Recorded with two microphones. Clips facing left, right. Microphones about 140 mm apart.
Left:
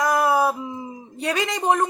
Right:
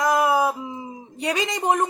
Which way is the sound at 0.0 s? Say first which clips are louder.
Even; 20° right (ahead or behind).